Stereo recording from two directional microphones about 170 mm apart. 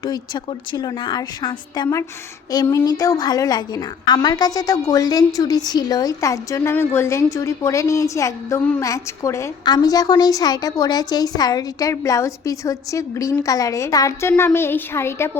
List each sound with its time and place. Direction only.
0.0 s a woman's voice: 25° left (ahead or behind)